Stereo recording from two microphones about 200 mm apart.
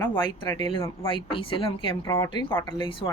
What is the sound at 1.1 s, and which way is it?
A woman's voice, 25° left (ahead or behind).